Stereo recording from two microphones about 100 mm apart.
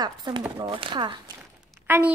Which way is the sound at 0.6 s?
55° right (ahead or behind).